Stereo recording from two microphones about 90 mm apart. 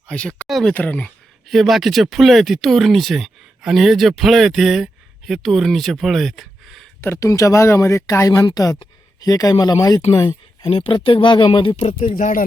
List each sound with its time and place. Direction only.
0.1 s speech: 10° left (ahead or behind)
0.4 s a sound: centre (ahead or behind)
0.7 s speech: 20° left (ahead or behind)
1.5 s speech: centre (ahead or behind)
7.0 s speech: 25° left (ahead or behind)
7.3 s speech: 40° left (ahead or behind)
10.7 s speech: 80° left